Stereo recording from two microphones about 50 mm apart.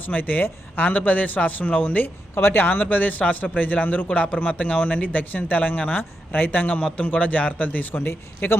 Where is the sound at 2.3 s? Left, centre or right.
Left.